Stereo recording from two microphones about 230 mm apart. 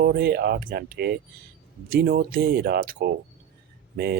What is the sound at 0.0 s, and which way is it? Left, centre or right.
Speech, right.